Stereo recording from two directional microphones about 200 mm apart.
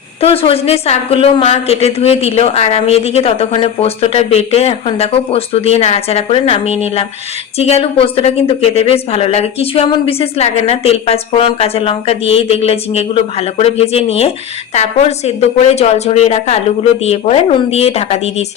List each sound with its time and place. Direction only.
0.2 s a woman's voice: 30° left (ahead or behind)